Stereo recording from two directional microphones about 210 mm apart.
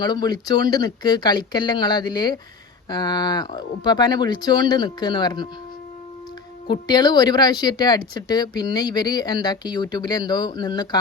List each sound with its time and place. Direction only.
0.0 s speech: 20° left (ahead or behind)
6.7 s speech: 20° left (ahead or behind)